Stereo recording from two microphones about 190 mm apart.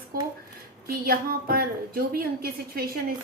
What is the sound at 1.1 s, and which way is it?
A woman's voice, 50° right (ahead or behind).